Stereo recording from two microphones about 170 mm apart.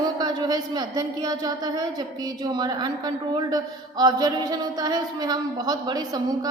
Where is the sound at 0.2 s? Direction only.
25° right (ahead or behind).